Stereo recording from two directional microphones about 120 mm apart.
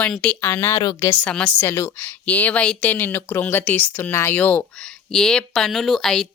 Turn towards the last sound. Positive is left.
turn(degrees=5)  # may be behind; listen again after turning